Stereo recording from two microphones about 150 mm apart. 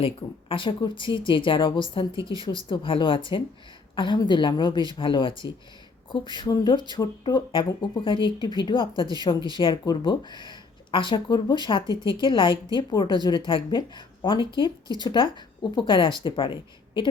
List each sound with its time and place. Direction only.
0.0 s speech: 35° left (ahead or behind)